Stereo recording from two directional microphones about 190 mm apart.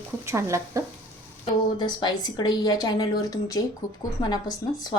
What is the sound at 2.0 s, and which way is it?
A woman's voice, 20° left (ahead or behind).